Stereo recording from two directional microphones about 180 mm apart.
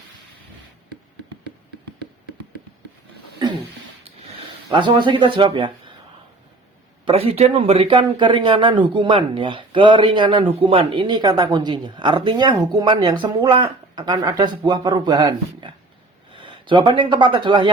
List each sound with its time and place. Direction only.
3.4 s a sound: 25° right (ahead or behind)
4.7 s a man's voice: 30° right (ahead or behind)
7.0 s a man's voice: 35° right (ahead or behind)